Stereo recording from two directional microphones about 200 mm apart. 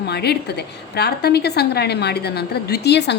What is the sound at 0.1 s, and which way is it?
A woman's voice, 55° left (ahead or behind).